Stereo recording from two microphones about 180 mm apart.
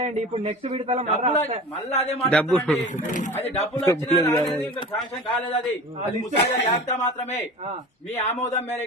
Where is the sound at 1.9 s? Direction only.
35° left (ahead or behind).